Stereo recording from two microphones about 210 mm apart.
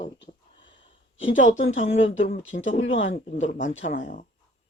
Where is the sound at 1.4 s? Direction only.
35° left (ahead or behind).